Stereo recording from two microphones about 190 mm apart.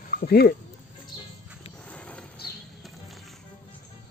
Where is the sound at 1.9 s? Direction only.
5° left (ahead or behind).